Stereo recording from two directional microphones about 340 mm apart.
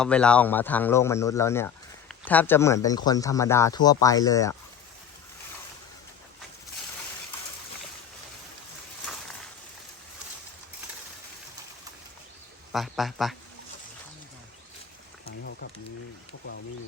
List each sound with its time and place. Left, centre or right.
0.0 s speech: centre
12.7 s speech: centre
15.2 s a sound: left